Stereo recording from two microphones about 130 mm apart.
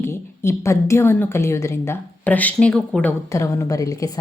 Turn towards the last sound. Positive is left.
turn(degrees=25)  # may be behind; listen again after turning